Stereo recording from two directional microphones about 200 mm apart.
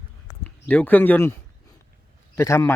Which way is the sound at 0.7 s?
10° left (ahead or behind).